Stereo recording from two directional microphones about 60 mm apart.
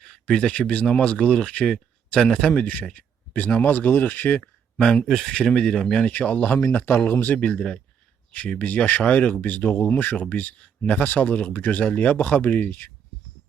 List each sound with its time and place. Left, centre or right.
0.0 s a man's voice: centre; by 4.4 s left
4.4 s a sound: centre
5.0 s speech: centre
5.3 s speech: centre; by 7.3 s left
7.3 s a man's voice: centre